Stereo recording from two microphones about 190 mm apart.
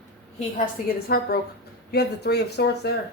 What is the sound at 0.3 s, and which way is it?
A woman's voice, 45° left (ahead or behind).